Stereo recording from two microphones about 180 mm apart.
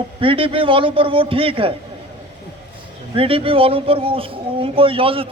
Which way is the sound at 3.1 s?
30° right (ahead or behind).